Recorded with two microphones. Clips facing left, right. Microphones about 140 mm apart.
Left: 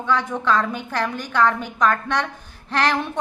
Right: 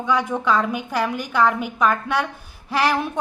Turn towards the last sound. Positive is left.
turn(degrees=-10)  # may be behind; listen again after turning